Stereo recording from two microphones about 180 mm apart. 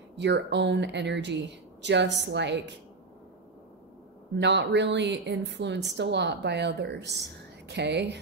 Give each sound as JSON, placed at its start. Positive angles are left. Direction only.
{"t": 0.1, "sound": "speech", "side_deg": -75}
{"t": 4.4, "sound": "speech", "side_deg": -75}